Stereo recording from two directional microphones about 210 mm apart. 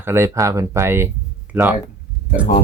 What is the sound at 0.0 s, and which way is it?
Speech, 10° right (ahead or behind).